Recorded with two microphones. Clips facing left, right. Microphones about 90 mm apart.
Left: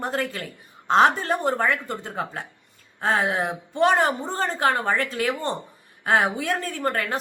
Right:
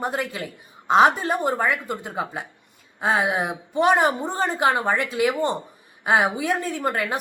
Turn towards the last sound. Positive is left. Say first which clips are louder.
# right 1 dB
turn(degrees=-10)  # may be behind; listen again after turning